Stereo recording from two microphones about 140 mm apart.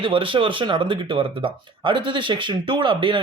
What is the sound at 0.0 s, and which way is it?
Speech, 40° right (ahead or behind).